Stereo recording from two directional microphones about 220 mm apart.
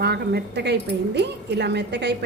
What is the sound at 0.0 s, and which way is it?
A woman's voice, 50° right (ahead or behind).